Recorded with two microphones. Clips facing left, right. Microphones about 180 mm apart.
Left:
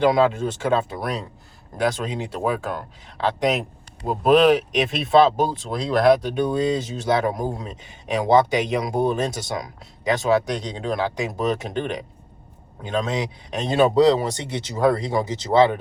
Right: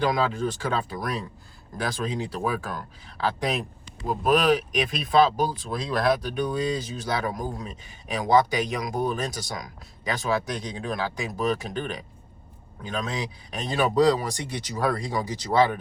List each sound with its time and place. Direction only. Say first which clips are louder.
0.0 s speech: left 6 dB; 25° left (ahead or behind)